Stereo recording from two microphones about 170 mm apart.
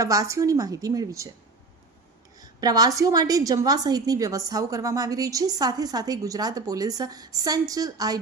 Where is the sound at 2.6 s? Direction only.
20° right (ahead or behind).